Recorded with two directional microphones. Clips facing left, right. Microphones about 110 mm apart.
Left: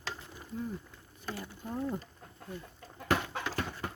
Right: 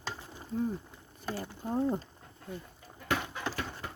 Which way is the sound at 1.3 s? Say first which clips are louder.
Right 5 dB; 30° right (ahead or behind).